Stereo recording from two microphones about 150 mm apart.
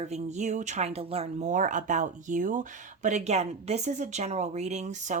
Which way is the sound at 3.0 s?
50° right (ahead or behind).